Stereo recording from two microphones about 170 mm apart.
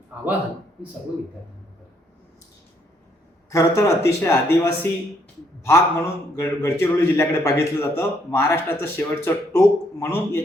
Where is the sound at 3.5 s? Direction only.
20° left (ahead or behind).